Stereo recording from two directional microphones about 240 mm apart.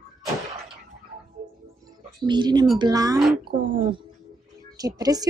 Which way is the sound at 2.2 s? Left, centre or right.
Centre.